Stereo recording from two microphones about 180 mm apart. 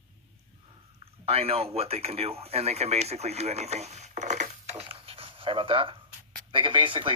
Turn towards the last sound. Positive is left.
turn(degrees=-30)  # may be behind; listen again after turning